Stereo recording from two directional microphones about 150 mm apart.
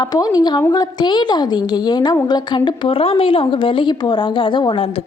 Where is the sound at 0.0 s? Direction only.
25° left (ahead or behind).